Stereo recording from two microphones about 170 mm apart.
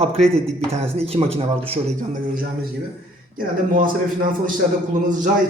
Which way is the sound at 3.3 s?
55° right (ahead or behind).